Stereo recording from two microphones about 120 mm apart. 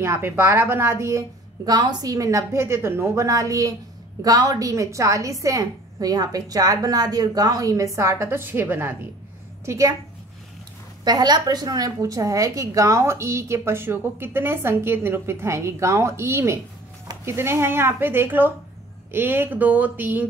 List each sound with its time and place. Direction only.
0.0 s a woman's voice: 20° right (ahead or behind)
11.1 s a woman's voice: 35° right (ahead or behind); by 20.2 s 15° right (ahead or behind)